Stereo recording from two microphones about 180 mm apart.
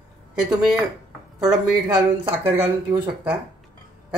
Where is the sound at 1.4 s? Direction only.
25° right (ahead or behind).